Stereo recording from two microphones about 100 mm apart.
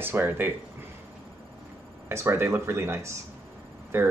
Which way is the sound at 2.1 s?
25° right (ahead or behind).